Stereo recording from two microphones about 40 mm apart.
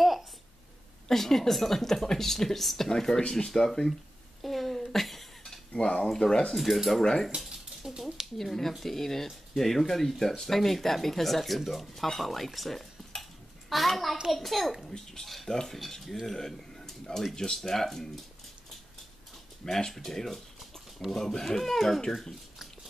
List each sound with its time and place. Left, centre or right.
1.0 s speech: centre
4.4 s a sound: centre
5.7 s cutlery: left
6.0 s speech: centre
6.5 s speech: centre
7.2 s a sound: centre
8.4 s speech: centre
16.3 s a sound: centre
17.2 s speech: centre
19.6 s speech: centre